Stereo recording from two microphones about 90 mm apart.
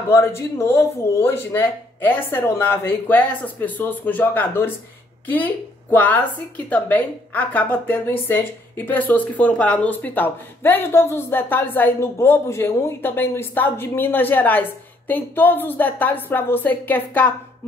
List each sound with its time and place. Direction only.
0.1 s speech: 30° left (ahead or behind)